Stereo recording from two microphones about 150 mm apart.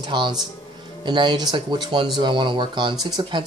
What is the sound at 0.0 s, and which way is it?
Speech, 30° right (ahead or behind).